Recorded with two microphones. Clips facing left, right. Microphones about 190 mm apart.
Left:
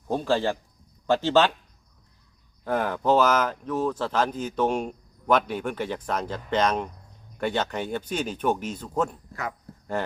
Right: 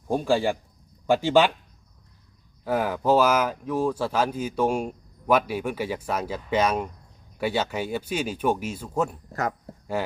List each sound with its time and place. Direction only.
0.1 s speech: 10° right (ahead or behind)
2.6 s speech: 5° right (ahead or behind)
9.3 s speech: 45° right (ahead or behind)